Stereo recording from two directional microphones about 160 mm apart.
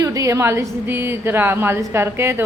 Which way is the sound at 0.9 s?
15° right (ahead or behind).